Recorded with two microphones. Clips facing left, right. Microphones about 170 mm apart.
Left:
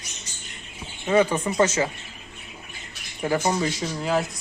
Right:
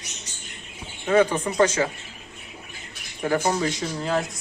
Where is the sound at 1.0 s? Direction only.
10° left (ahead or behind).